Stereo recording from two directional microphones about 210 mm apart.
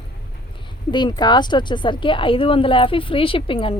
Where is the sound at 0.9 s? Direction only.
20° left (ahead or behind).